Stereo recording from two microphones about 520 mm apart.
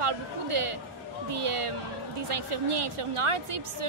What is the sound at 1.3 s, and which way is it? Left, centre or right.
A woman's voice, right.